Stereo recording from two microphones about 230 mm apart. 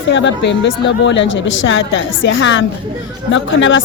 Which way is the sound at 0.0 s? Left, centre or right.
Left.